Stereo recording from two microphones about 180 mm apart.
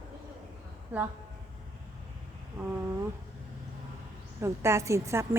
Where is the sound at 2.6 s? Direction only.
10° right (ahead or behind).